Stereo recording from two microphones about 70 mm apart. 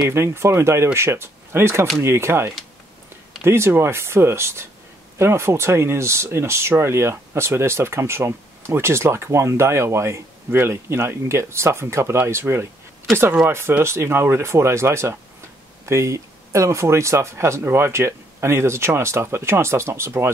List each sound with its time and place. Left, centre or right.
0.1 s speech: right